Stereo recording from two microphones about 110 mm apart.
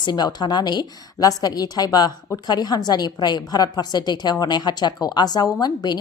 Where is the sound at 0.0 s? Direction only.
40° left (ahead or behind).